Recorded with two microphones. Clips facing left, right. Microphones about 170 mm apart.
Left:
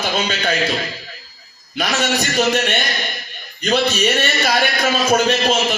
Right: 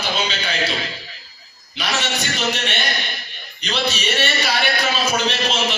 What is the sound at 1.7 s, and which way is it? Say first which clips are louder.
A man's voice: left 5 dB; 50° left (ahead or behind).